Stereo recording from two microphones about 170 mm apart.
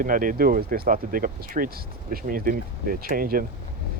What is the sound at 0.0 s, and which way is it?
Speech, 55° right (ahead or behind).